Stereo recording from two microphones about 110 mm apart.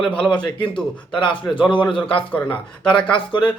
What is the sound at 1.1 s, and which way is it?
Speech, 50° left (ahead or behind).